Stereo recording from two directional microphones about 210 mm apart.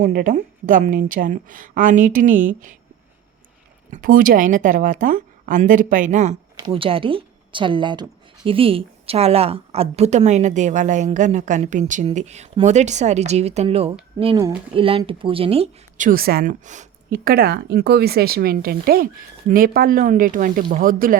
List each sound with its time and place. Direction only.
0.0 s a woman's voice: 40° right (ahead or behind)
3.9 s a woman's voice: 40° right (ahead or behind)
6.6 s a woman's voice: 20° right (ahead or behind); by 21.2 s 40° right (ahead or behind)